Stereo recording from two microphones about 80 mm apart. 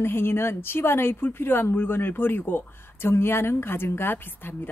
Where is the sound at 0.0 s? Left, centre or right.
Left.